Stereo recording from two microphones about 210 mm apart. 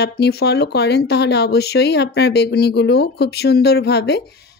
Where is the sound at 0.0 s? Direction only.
50° left (ahead or behind).